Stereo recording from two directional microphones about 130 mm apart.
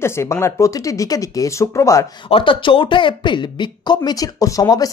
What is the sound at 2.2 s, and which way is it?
A woman's voice, 40° left (ahead or behind).